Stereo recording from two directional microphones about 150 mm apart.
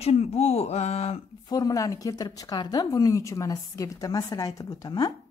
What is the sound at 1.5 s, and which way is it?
A woman's voice, 25° left (ahead or behind).